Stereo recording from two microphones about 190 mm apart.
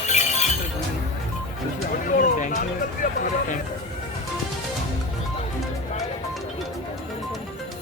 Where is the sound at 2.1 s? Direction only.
40° left (ahead or behind).